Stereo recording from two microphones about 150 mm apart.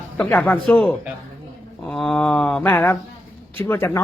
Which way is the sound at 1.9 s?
5° left (ahead or behind).